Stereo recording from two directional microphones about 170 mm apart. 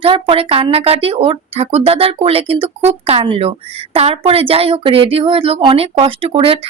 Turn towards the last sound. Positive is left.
turn(degrees=-30)  # may be behind; listen again after turning